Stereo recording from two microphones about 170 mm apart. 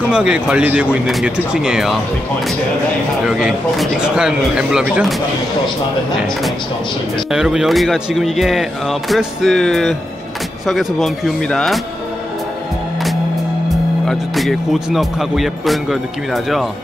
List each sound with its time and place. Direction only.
0.1 s speech: 5° right (ahead or behind)
3.3 s speech: 5° right (ahead or behind)
7.2 s speech: 5° right (ahead or behind)
14.0 s speech: centre (ahead or behind)